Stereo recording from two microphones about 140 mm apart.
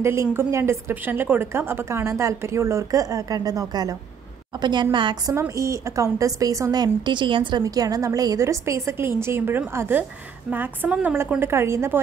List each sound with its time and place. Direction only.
0.0 s a woman's voice: 20° right (ahead or behind); by 5.3 s 35° right (ahead or behind)
5.3 s a woman's voice: 20° right (ahead or behind)